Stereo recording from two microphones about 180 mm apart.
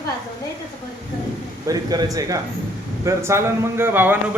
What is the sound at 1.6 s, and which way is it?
Speech, 20° right (ahead or behind).